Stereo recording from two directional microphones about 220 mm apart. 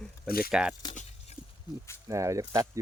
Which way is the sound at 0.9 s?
30° left (ahead or behind).